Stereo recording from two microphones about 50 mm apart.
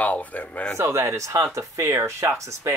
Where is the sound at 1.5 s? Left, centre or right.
Right.